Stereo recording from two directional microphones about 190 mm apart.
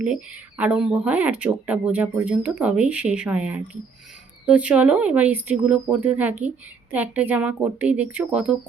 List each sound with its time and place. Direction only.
0.0 s speech: 5° right (ahead or behind)